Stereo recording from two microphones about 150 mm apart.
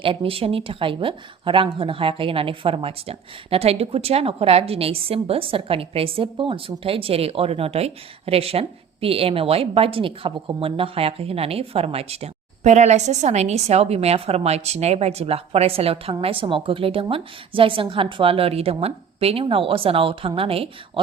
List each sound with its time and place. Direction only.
0.0 s speech: 35° right (ahead or behind)